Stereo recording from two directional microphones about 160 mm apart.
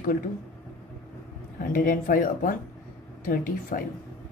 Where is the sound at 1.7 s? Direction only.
60° left (ahead or behind).